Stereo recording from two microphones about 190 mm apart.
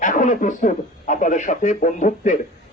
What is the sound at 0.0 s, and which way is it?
A man's voice, 40° left (ahead or behind).